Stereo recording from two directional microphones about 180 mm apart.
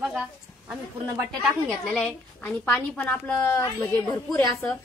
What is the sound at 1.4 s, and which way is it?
A woman's voice, centre (ahead or behind).